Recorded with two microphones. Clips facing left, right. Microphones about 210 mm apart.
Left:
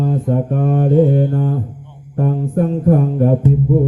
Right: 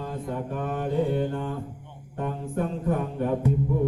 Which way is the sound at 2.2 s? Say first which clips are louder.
Left 11 dB; 40° left (ahead or behind).